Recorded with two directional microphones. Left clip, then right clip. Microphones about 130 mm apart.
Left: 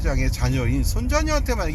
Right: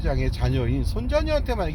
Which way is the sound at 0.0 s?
20° right (ahead or behind).